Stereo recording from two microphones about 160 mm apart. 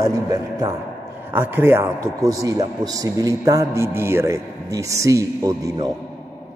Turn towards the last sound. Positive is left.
turn(degrees=-20)  # may be behind; listen again after turning